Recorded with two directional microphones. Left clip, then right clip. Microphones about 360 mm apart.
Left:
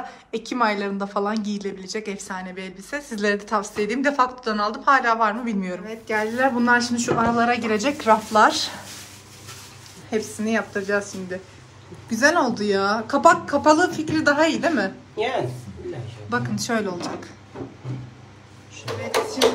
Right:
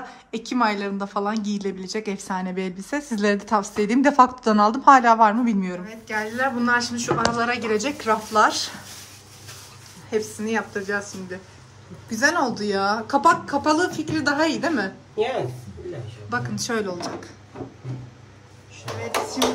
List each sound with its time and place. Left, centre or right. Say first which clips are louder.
0.3 s speech: even; centre
5.9 s a woman's voice: left 7 dB; centre
10.0 s a woman's voice: even; centre
14.6 s a woman's voice: left 2 dB; centre
16.3 s speech: left 1 dB; centre